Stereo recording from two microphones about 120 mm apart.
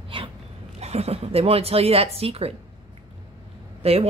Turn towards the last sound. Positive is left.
turn(degrees=-55)  # may be behind; listen again after turning